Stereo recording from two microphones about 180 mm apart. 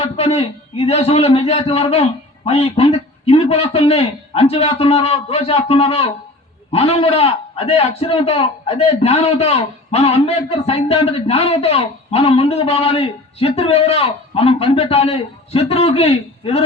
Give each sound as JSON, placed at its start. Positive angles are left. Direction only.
{"t": 0.0, "sound": "a man's voice", "side_deg": 35}